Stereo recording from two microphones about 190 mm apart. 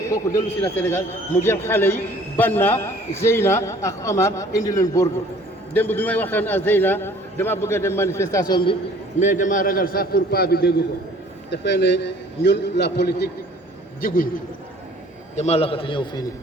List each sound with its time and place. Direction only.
0.0 s a man's voice: 15° left (ahead or behind)
9.2 s a man's voice: 40° left (ahead or behind); by 13.3 s 60° left (ahead or behind)
15.4 s a man's voice: 35° left (ahead or behind)